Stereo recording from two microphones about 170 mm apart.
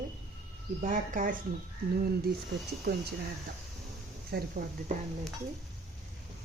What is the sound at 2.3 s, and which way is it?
Speech, 65° right (ahead or behind).